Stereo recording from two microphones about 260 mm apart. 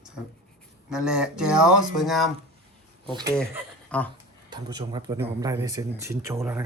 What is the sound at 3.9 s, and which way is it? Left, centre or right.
Speech, centre.